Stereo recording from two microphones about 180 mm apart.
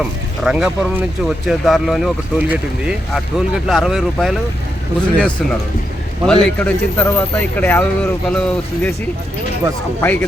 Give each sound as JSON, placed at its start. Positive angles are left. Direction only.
{"t": 0.0, "sound": "speech", "side_deg": -5}
{"t": 10.0, "sound": "speech", "side_deg": 10}